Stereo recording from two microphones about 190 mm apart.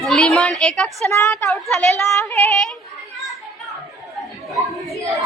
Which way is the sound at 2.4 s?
5° left (ahead or behind).